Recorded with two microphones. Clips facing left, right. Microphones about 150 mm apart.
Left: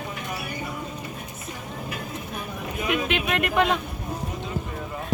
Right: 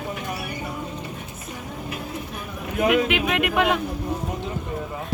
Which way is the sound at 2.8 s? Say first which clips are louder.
Right 7 dB; 65° right (ahead or behind).